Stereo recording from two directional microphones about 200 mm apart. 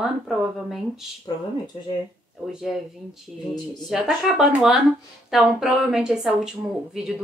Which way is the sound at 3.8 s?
5° right (ahead or behind).